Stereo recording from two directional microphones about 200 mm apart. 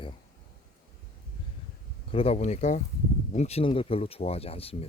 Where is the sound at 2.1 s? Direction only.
30° left (ahead or behind).